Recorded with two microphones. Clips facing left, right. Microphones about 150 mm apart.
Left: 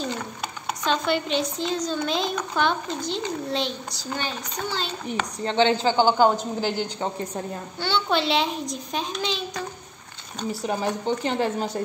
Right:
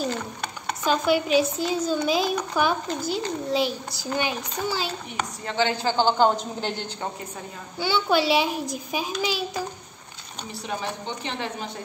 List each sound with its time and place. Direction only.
0.7 s a child's voice: 5° right (ahead or behind)
5.4 s a woman's voice: 30° left (ahead or behind); by 6.9 s 5° left (ahead or behind)
7.8 s a child's voice: 5° right (ahead or behind)
10.5 s a woman's voice: 40° left (ahead or behind)